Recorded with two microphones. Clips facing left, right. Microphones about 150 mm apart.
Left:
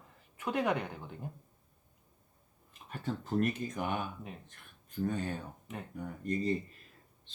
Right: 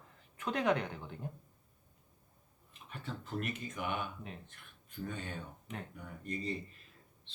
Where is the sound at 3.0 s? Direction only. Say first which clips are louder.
Left 8 dB; 40° left (ahead or behind).